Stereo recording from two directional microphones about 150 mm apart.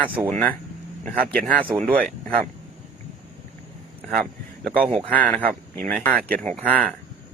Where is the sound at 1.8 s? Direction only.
70° right (ahead or behind).